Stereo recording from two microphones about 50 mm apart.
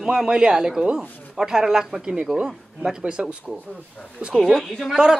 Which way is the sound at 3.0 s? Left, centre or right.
Right.